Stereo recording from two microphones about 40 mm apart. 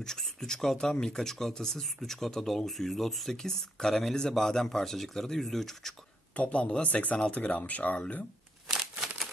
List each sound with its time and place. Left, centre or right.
0.0 s speech: centre
3.4 s speech: centre
6.3 s speech: left